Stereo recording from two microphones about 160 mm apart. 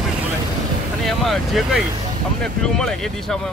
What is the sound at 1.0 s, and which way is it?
Speech, centre (ahead or behind).